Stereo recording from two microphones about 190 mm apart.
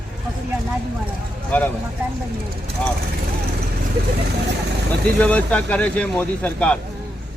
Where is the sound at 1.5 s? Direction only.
10° left (ahead or behind).